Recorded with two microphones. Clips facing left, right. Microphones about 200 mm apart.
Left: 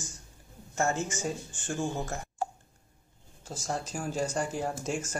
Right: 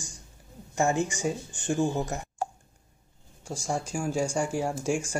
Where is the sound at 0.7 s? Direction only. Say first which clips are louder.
Right 4 dB; 15° right (ahead or behind).